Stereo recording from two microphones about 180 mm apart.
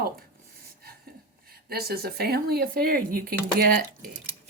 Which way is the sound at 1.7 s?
60° right (ahead or behind).